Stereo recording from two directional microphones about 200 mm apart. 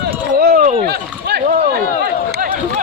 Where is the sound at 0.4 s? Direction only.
50° right (ahead or behind).